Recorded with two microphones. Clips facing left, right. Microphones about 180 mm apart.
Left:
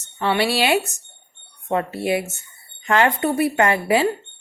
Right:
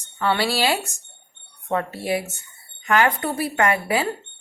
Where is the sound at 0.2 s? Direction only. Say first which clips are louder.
Left 2 dB; 25° left (ahead or behind).